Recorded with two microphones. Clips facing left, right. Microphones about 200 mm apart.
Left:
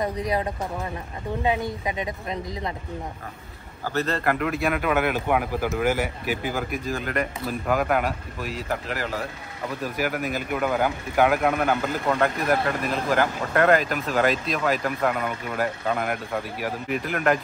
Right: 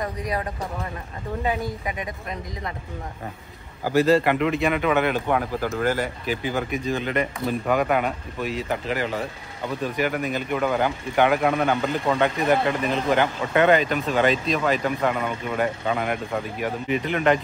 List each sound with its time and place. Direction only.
0.0 s speech: 25° left (ahead or behind)
3.8 s speech: 10° right (ahead or behind)